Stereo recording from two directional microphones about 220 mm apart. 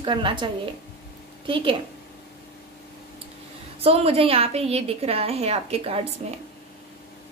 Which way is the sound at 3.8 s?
25° right (ahead or behind).